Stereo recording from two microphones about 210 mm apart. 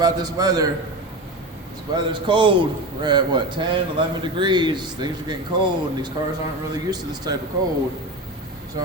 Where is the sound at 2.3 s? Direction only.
25° right (ahead or behind).